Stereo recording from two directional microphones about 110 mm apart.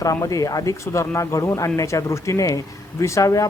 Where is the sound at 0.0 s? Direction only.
30° left (ahead or behind).